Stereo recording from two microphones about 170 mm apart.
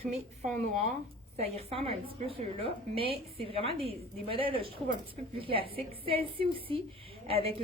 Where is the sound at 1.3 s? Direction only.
35° right (ahead or behind).